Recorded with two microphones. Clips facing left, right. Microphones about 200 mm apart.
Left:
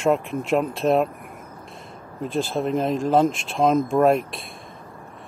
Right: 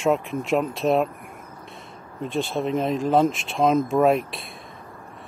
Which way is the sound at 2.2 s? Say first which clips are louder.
Left 1 dB; centre (ahead or behind).